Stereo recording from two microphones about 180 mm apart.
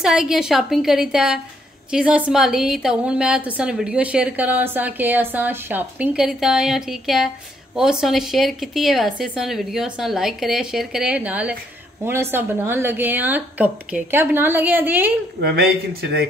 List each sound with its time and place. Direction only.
0.0 s a woman's voice: 5° right (ahead or behind)
15.4 s speech: 60° right (ahead or behind)